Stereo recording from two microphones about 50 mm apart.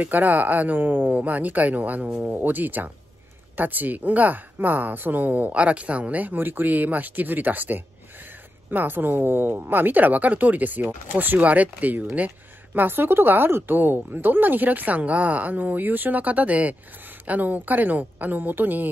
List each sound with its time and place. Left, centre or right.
0.0 s speech: right
5.5 s speech: right
12.7 s speech: right